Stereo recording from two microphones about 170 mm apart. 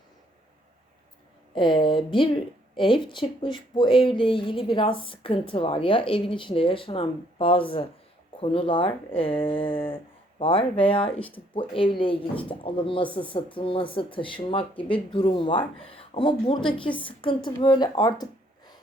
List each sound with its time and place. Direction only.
1.5 s a woman's voice: 30° left (ahead or behind)